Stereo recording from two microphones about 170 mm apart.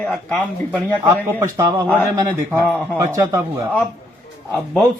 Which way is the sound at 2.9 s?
15° right (ahead or behind).